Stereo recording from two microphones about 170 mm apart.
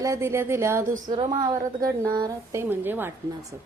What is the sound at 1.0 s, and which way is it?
A woman's voice, 30° right (ahead or behind).